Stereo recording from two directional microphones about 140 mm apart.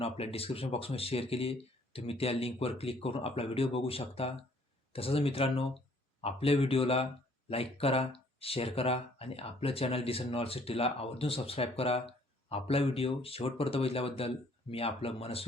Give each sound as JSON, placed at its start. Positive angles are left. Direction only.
{"t": 0.0, "sound": "speech", "side_deg": 45}